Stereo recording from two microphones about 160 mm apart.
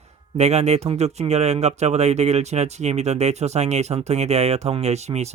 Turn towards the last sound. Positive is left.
turn(degrees=-45)  # may be behind; listen again after turning